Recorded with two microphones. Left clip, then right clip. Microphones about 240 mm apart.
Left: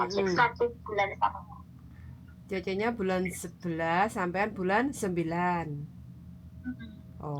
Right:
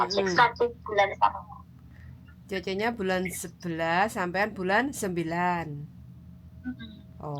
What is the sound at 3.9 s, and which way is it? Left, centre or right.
Speech, right.